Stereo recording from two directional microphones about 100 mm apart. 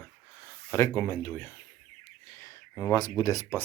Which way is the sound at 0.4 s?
25° left (ahead or behind).